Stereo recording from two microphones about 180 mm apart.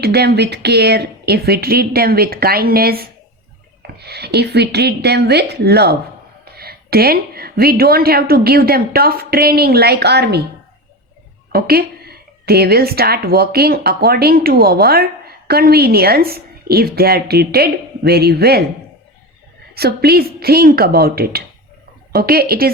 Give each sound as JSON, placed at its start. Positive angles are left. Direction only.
{"t": 0.0, "sound": "a woman's voice", "side_deg": -60}
{"t": 11.5, "sound": "a woman's voice", "side_deg": -60}
{"t": 19.7, "sound": "a woman's voice", "side_deg": -60}